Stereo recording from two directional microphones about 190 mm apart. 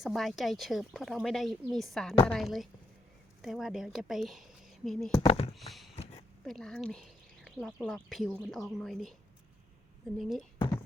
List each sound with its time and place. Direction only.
0.0 s speech: centre (ahead or behind)
5.2 s speech: 30° left (ahead or behind)
5.5 s a sound: centre (ahead or behind)
6.0 s a sound: 35° left (ahead or behind)
6.4 s speech: 5° left (ahead or behind)
10.2 s speech: centre (ahead or behind)